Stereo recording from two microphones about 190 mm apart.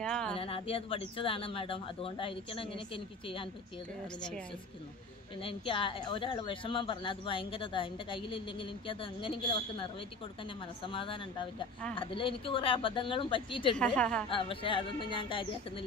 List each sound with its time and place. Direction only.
0.0 s a sound: 5° left (ahead or behind)
0.4 s speech: 30° left (ahead or behind)
5.4 s speech: 30° left (ahead or behind)
10.9 s speech: 25° left (ahead or behind)
13.7 s a woman's voice: 5° left (ahead or behind)
14.3 s speech: 30° left (ahead or behind)